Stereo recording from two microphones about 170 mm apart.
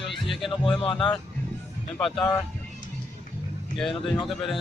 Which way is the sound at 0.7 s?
30° left (ahead or behind).